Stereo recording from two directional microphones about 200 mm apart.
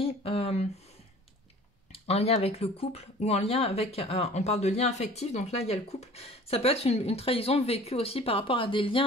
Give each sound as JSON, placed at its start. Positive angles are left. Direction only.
{"t": 0.0, "sound": "speech", "side_deg": 30}
{"t": 1.9, "sound": "speech", "side_deg": 30}